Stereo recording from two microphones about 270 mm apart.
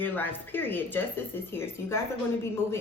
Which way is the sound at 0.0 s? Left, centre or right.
Centre.